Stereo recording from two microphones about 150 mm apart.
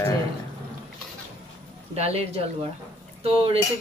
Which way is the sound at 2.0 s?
45° right (ahead or behind).